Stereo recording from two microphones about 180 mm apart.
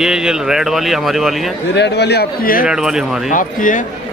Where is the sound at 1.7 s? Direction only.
70° left (ahead or behind); by 2.7 s 55° left (ahead or behind).